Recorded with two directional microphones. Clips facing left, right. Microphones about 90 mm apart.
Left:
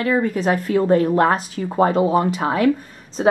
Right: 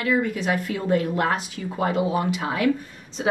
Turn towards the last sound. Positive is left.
turn(degrees=40)  # may be behind; listen again after turning